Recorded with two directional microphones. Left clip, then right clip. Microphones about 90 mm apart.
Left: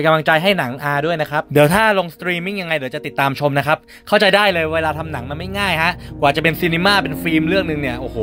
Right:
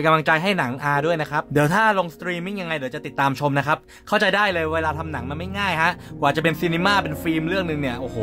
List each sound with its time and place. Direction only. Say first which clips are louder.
0.0 s speech: left 4 dB; 20° left (ahead or behind)
1.5 s speech: left 6 dB; 35° left (ahead or behind)